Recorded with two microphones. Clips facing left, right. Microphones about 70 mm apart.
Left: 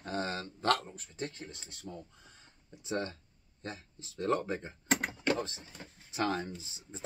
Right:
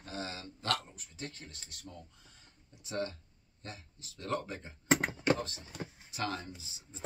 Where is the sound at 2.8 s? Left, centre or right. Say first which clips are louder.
Left 1 dB; left.